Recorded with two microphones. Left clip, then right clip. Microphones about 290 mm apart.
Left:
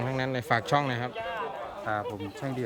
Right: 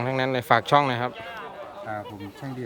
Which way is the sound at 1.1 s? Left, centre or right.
Left.